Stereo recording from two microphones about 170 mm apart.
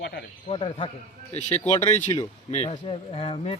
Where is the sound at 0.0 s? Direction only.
75° left (ahead or behind).